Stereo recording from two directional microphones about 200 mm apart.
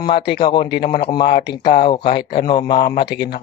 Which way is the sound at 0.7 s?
50° left (ahead or behind).